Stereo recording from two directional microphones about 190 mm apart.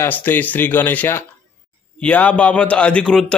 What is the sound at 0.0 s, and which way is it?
A man's voice, 10° left (ahead or behind).